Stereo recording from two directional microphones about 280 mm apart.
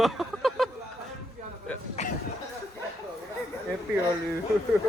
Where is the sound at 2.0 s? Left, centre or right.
Left.